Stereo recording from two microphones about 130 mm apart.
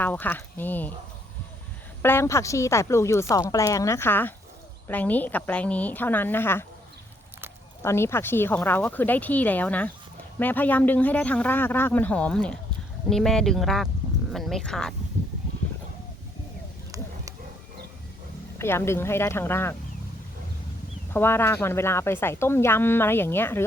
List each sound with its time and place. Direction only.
0.0 s a woman's voice: 15° left (ahead or behind)
2.0 s a woman's voice: 20° left (ahead or behind)
7.8 s a woman's voice: 20° left (ahead or behind); by 14.9 s 5° left (ahead or behind)
18.6 s a woman's voice: 20° left (ahead or behind)
21.1 s a woman's voice: 15° left (ahead or behind)